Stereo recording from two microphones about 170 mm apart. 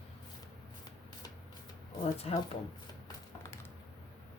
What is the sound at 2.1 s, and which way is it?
Speech, 35° left (ahead or behind).